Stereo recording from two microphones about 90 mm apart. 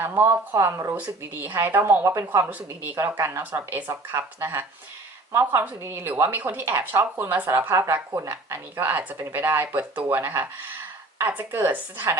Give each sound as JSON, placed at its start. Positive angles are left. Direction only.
{"t": 0.0, "sound": "speech", "side_deg": -25}
{"t": 0.9, "sound": "speech", "side_deg": -20}